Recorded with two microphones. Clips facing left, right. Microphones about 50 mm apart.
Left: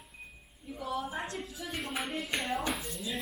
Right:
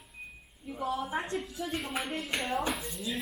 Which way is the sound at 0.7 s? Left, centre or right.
Right.